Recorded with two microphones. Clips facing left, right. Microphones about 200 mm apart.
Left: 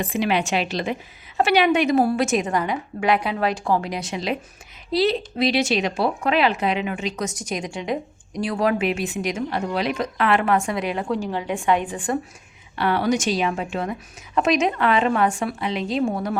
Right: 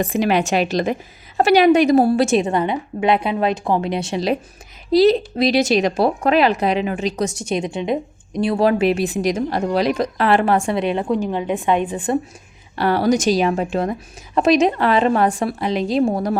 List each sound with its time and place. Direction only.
0.0 s a woman's voice: 45° right (ahead or behind); by 12.2 s 25° right (ahead or behind)
12.7 s a woman's voice: 40° right (ahead or behind)